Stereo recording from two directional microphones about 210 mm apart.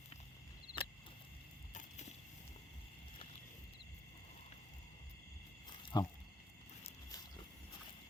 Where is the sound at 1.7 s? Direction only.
35° left (ahead or behind).